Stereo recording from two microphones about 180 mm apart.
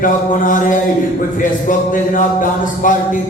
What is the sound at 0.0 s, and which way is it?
Speech, 45° left (ahead or behind).